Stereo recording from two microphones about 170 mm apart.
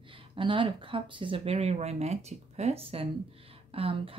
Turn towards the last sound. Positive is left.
turn(degrees=-35)  # may be behind; listen again after turning